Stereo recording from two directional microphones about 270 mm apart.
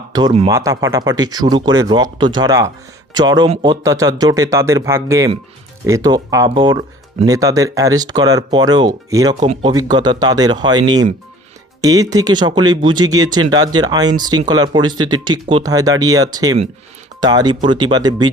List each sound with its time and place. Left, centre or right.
0.1 s speech: centre